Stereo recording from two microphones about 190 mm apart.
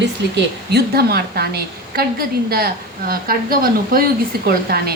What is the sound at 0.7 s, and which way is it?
Speech, 55° right (ahead or behind).